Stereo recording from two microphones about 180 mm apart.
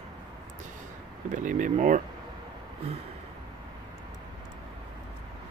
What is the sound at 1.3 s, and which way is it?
Speech, 45° right (ahead or behind).